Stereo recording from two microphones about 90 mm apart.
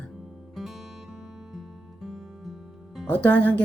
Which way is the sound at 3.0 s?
20° left (ahead or behind).